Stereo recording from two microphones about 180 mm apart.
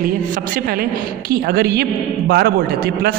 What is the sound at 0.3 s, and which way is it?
A woman's voice, 55° right (ahead or behind).